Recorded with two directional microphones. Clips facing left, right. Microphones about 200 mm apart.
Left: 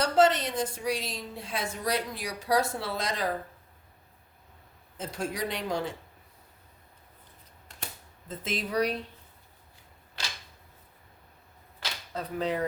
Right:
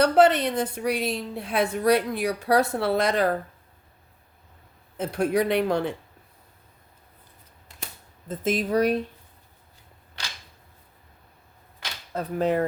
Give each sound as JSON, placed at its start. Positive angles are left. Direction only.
{"t": 0.0, "sound": "a woman's voice", "side_deg": -60}
{"t": 4.9, "sound": "a woman's voice", "side_deg": -60}
{"t": 8.3, "sound": "speech", "side_deg": -45}
{"t": 12.1, "sound": "speech", "side_deg": -50}